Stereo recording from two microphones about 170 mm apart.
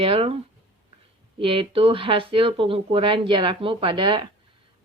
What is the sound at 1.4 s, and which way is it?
Speech, 30° right (ahead or behind).